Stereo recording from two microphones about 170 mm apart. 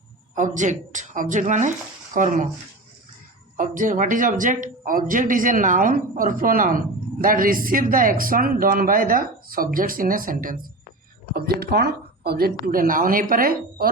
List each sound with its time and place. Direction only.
0.3 s speech: 45° right (ahead or behind)
3.6 s speech: 50° right (ahead or behind)
11.6 s speech: 70° right (ahead or behind)